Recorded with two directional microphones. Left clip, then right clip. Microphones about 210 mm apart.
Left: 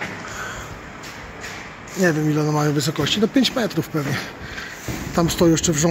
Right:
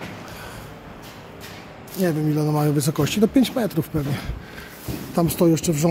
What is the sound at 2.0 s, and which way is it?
Speech, 5° right (ahead or behind).